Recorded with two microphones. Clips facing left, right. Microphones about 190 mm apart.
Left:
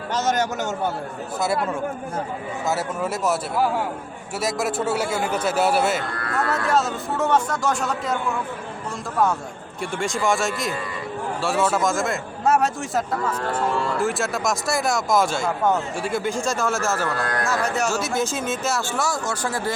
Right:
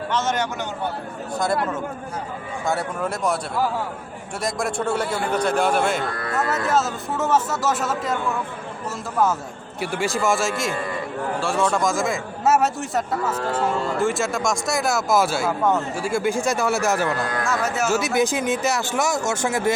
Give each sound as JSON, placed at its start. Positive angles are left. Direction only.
{"t": 0.1, "sound": "speech", "side_deg": 40}
{"t": 2.6, "sound": "speech", "side_deg": 5}
{"t": 4.4, "sound": "speech", "side_deg": 5}
{"t": 9.8, "sound": "speech", "side_deg": -5}
{"t": 16.4, "sound": "speech", "side_deg": -15}
{"t": 17.4, "sound": "speech", "side_deg": 0}
{"t": 17.9, "sound": "speech", "side_deg": -15}